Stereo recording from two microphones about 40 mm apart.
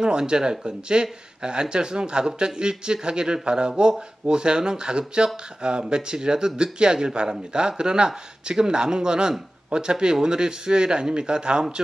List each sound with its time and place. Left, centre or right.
0.0 s speech: right